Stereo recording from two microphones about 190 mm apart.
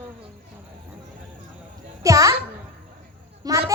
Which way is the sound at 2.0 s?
15° right (ahead or behind).